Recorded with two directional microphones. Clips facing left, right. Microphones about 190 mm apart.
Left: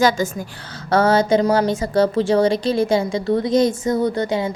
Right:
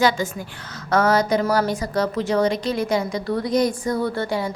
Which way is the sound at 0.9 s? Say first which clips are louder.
Left 3 dB; 30° left (ahead or behind).